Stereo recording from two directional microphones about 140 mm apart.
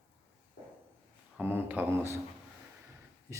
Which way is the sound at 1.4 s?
15° right (ahead or behind).